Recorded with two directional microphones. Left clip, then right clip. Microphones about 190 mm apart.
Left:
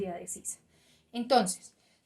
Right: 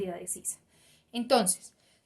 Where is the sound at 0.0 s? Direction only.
30° right (ahead or behind).